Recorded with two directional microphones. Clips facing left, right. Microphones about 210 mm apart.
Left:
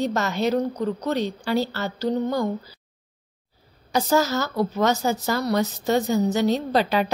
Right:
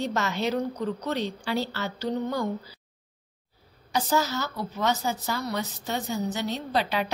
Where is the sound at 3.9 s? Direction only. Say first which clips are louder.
Left 5 dB; 45° left (ahead or behind).